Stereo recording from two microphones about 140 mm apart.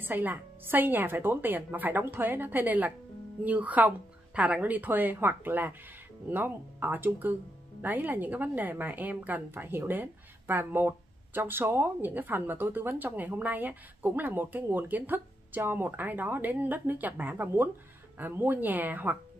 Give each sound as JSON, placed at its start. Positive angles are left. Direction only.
{"t": 0.0, "sound": "a woman's voice", "side_deg": -15}